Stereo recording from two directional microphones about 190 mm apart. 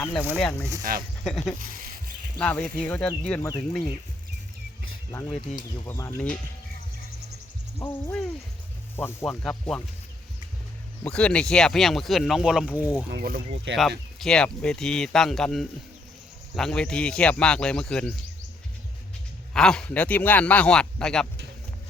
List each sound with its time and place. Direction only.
0.0 s speech: 10° left (ahead or behind)
0.9 s speech: 50° right (ahead or behind)
1.2 s speech: centre (ahead or behind)
1.5 s snake: 45° right (ahead or behind)
2.4 s speech: 5° left (ahead or behind)
5.1 s speech: 10° left (ahead or behind)
7.8 s speech: 10° left (ahead or behind)
11.0 s speech: 5° left (ahead or behind)
12.7 s speech: 15° left (ahead or behind)
13.1 s speech: 55° right (ahead or behind)
14.2 s speech: 5° left (ahead or behind)
19.5 s speech: 5° left (ahead or behind)